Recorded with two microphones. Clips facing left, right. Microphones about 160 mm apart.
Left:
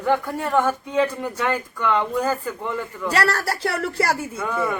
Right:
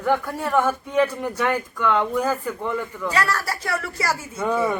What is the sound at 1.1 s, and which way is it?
Speech, 10° right (ahead or behind).